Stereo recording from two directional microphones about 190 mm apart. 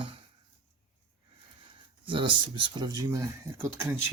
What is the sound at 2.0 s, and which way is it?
Speech, 25° right (ahead or behind).